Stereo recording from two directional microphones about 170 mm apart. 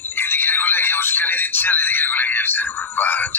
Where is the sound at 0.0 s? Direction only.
10° left (ahead or behind).